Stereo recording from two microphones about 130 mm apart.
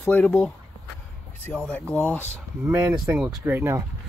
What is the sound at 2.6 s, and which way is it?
Speech, 15° right (ahead or behind).